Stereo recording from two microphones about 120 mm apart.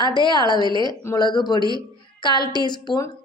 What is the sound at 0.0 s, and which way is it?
A woman's voice, 40° left (ahead or behind).